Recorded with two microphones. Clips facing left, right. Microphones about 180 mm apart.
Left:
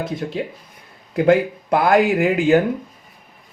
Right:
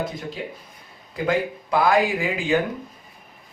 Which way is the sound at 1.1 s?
60° left (ahead or behind).